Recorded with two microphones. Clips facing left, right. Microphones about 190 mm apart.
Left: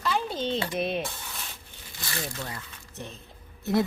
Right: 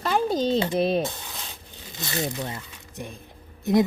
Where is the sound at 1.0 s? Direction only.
20° right (ahead or behind).